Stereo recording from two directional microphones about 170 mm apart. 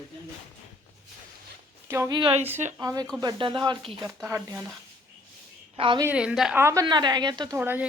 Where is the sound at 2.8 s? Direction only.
25° right (ahead or behind).